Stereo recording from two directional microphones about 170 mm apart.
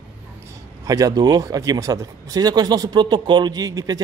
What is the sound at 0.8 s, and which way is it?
Speech, 20° right (ahead or behind).